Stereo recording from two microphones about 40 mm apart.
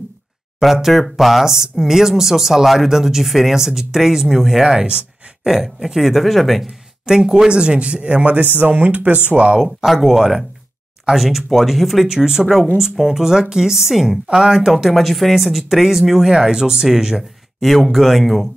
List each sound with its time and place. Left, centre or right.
0.6 s speech: centre
4.8 s a sound: right
5.5 s speech: centre
7.1 s speech: centre; by 8.5 s right
8.5 s speech: right
9.3 s speech: right
9.6 s speech: centre
16.3 s speech: centre
17.6 s speech: centre